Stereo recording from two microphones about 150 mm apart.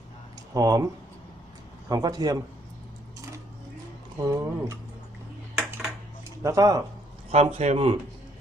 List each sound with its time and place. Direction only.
0.5 s speech: 25° right (ahead or behind)
1.9 s speech: 25° right (ahead or behind)
4.2 s speech: 20° right (ahead or behind)
6.4 s speech: 25° right (ahead or behind)
7.3 s speech: 45° right (ahead or behind)